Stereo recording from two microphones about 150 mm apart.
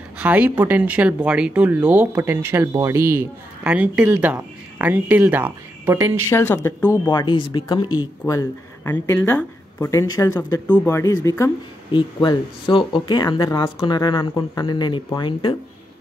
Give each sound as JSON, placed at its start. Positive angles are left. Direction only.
{"t": 0.2, "sound": "speech", "side_deg": -10}
{"t": 6.3, "sound": "speech", "side_deg": 15}
{"t": 7.1, "sound": "speech", "side_deg": 30}
{"t": 11.9, "sound": "speech", "side_deg": 35}